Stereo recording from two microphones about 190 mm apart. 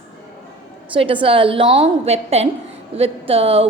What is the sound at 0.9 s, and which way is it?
A woman's voice, 25° right (ahead or behind).